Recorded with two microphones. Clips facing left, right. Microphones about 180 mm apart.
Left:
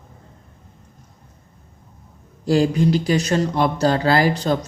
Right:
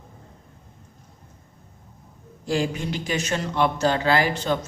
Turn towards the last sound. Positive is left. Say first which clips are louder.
# left 4 dB
turn(degrees=35)  # may be behind; listen again after turning